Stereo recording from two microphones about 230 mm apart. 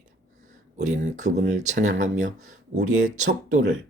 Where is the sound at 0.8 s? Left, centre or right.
Right.